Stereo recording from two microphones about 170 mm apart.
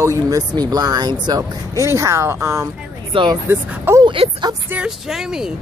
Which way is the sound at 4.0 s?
30° right (ahead or behind).